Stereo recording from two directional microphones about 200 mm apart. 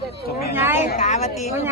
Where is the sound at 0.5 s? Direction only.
10° right (ahead or behind).